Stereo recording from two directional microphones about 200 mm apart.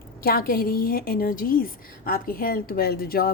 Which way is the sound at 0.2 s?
45° left (ahead or behind).